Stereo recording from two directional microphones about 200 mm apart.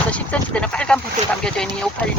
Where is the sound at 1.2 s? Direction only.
35° right (ahead or behind).